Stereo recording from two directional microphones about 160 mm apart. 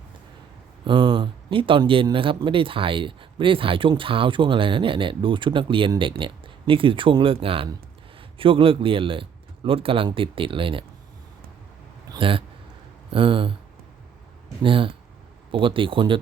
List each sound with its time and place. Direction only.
0.9 s speech: 30° right (ahead or behind)
12.0 s speech: 30° right (ahead or behind)
14.6 s speech: 35° right (ahead or behind)